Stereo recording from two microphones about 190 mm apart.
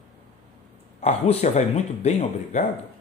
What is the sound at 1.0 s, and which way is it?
Speech, 30° left (ahead or behind).